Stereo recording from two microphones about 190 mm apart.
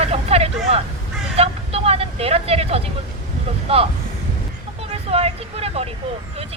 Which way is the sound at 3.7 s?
30° right (ahead or behind).